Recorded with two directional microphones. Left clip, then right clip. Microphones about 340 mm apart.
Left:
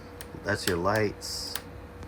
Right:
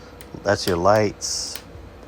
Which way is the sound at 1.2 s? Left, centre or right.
Right.